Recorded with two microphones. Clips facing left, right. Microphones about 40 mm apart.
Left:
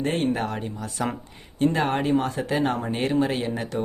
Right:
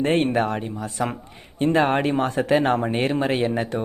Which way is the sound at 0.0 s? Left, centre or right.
Right.